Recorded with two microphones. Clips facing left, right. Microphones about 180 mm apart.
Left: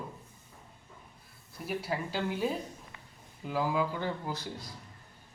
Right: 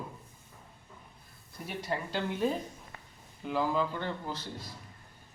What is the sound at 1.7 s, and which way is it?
A woman's voice, 5° left (ahead or behind).